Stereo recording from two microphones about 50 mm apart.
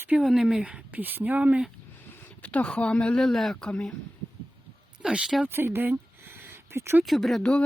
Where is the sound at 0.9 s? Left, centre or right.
Right.